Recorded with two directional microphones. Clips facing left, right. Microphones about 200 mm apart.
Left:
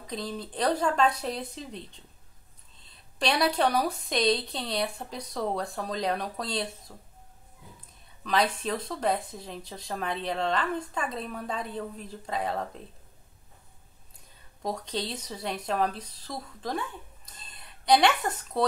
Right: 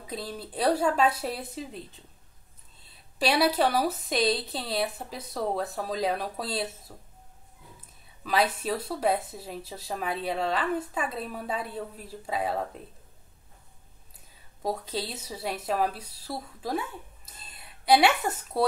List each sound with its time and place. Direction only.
0.0 s speech: 5° right (ahead or behind)
8.2 s speech: 5° right (ahead or behind)
14.1 s speech: 5° right (ahead or behind)
17.4 s a sound: 5° right (ahead or behind)